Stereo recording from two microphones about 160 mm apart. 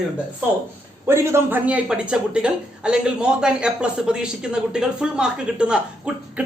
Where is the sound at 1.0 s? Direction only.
15° right (ahead or behind).